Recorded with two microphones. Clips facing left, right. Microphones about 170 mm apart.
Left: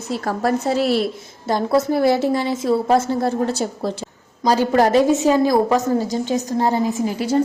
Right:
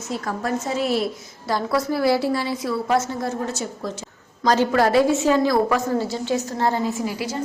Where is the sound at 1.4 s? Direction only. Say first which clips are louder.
Left 5 dB; 25° left (ahead or behind).